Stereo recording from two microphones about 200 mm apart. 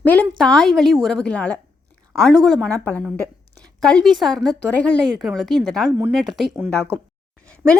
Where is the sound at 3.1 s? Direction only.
15° right (ahead or behind).